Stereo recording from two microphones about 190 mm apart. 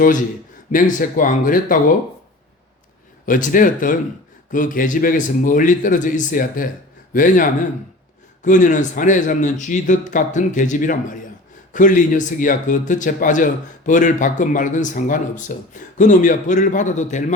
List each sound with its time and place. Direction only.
0.7 s speech: 45° left (ahead or behind)
3.2 s a man's voice: 45° left (ahead or behind)